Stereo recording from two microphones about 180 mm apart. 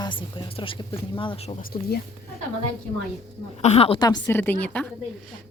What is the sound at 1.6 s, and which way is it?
Speech, 55° left (ahead or behind).